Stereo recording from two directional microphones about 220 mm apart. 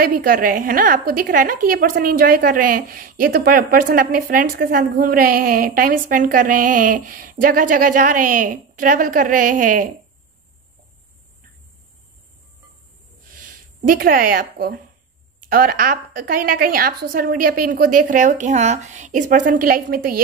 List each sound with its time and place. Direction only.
0.0 s a woman's voice: 40° right (ahead or behind)
13.4 s a woman's voice: 40° right (ahead or behind)